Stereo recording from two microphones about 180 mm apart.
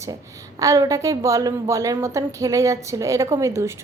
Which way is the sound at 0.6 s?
15° right (ahead or behind).